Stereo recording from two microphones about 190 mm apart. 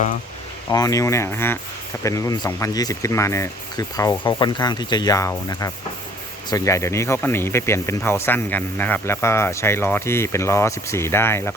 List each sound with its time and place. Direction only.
0.7 s speech: 20° left (ahead or behind)